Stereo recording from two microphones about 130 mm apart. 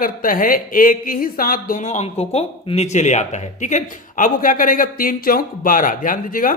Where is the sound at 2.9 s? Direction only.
65° left (ahead or behind); by 6.5 s 90° left.